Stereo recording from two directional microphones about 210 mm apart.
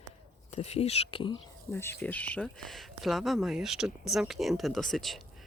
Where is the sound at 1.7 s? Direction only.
10° left (ahead or behind).